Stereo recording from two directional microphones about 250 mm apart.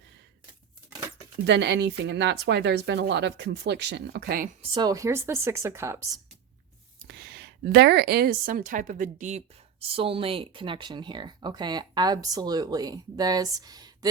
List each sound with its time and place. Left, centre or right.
1.5 s speech: right
4.7 s speech: centre
7.1 s a woman's voice: right; by 14.1 s centre